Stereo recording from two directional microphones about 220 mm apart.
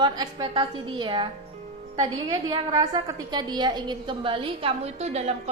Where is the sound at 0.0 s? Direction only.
20° right (ahead or behind).